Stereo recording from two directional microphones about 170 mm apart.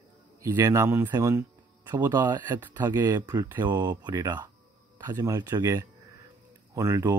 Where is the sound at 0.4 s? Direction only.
20° right (ahead or behind).